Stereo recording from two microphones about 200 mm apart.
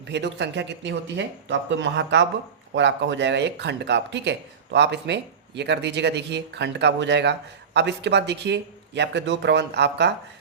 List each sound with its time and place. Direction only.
0.1 s speech: 60° right (ahead or behind)